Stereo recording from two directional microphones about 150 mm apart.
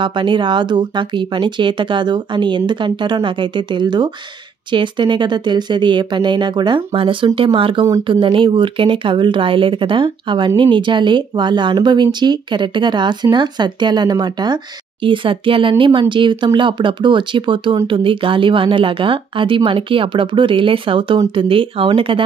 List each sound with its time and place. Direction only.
0.0 s speech: 35° right (ahead or behind)